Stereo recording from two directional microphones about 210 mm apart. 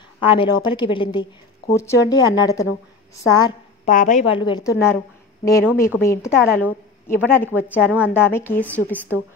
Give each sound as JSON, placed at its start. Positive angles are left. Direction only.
{"t": 0.2, "sound": "a woman's voice", "side_deg": 25}
{"t": 3.8, "sound": "a woman's voice", "side_deg": 40}
{"t": 4.3, "sound": "a woman's voice", "side_deg": 20}
{"t": 7.5, "sound": "speech", "side_deg": -5}
{"t": 8.1, "sound": "a woman's voice", "side_deg": 10}